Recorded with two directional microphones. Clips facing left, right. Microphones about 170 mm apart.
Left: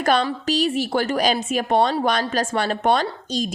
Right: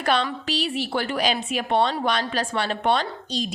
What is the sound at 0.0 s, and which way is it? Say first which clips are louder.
A woman's voice: left 4 dB; 45° left (ahead or behind).